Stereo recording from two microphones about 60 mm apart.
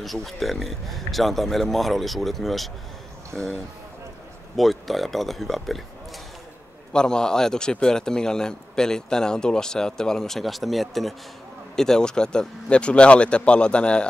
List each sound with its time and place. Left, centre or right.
0.0 s speech: centre
6.9 s speech: centre